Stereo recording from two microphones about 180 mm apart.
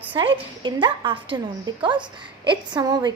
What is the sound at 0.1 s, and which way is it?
A woman's voice, 25° right (ahead or behind).